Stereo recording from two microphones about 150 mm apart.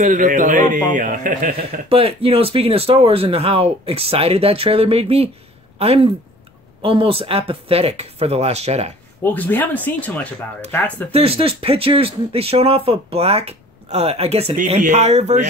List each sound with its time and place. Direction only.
0.0 s a man's voice: 60° right (ahead or behind)
1.9 s speech: 40° right (ahead or behind)
9.2 s speech: 10° left (ahead or behind)
11.1 s speech: 40° right (ahead or behind)